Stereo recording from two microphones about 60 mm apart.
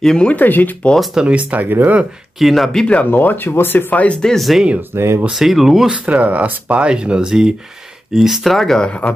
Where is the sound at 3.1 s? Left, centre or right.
Left.